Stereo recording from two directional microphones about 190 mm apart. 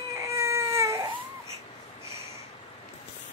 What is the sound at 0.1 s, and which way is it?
Baby cry, 15° right (ahead or behind).